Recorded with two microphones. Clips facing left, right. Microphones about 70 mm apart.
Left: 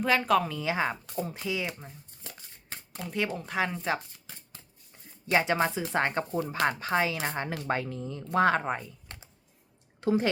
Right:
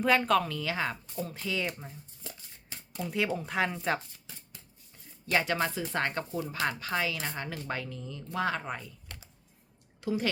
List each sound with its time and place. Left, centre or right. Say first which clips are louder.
0.0 s speech: left 1 dB; centre
0.4 s speech: left 3 dB; centre
2.6 s shuffling cards: right 2 dB; left
3.1 s speech: even; centre
5.2 s speech: left 3 dB; left